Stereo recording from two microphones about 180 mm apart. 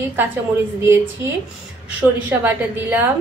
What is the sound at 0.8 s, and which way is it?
Speech, 15° right (ahead or behind).